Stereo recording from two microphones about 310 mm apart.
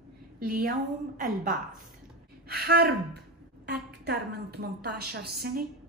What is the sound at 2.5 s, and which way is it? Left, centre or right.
A woman's voice, right.